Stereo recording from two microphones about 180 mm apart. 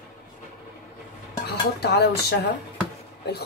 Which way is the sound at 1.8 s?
65° left (ahead or behind).